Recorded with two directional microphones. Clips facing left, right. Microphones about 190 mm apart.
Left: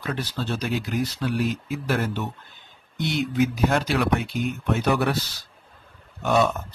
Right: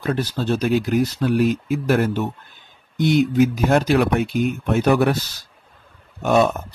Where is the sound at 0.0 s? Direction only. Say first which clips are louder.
Right 6 dB; 45° right (ahead or behind).